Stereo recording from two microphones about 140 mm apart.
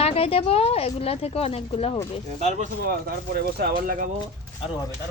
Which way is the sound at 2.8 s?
90° right.